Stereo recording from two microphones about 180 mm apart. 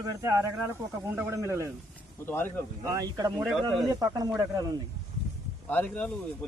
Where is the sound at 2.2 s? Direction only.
10° left (ahead or behind).